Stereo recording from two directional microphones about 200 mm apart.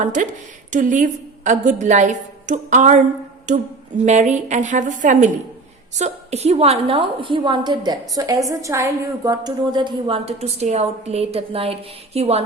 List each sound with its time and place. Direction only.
0.0 s a woman's voice: 40° right (ahead or behind)